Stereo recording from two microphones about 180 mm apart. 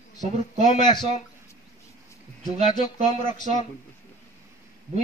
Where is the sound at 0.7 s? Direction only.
25° left (ahead or behind).